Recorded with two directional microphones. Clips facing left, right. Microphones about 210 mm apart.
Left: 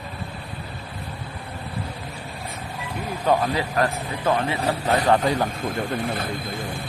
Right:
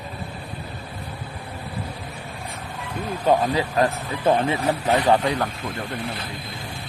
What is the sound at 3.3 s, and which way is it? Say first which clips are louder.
Speech: right 2 dB; 15° right (ahead or behind).